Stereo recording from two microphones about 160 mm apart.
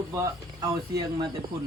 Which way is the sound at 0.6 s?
25° right (ahead or behind).